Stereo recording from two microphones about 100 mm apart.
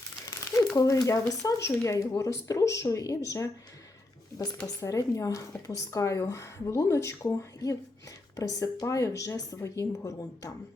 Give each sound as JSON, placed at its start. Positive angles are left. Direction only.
{"t": 0.8, "sound": "speech", "side_deg": 35}